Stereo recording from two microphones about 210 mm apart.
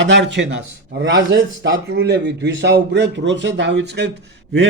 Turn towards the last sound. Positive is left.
turn(degrees=-60)  # may be behind; listen again after turning